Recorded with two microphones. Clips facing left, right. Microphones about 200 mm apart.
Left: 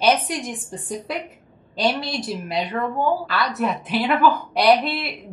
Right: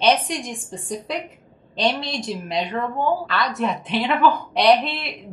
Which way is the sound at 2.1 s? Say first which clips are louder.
Even; 5° left (ahead or behind).